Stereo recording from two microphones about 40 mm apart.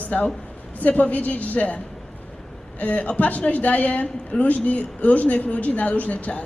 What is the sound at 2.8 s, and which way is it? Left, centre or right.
A woman's voice, left.